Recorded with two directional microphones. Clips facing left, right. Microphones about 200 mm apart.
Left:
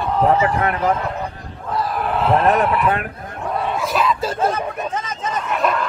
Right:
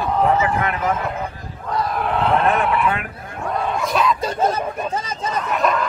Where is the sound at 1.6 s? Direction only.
Centre (ahead or behind).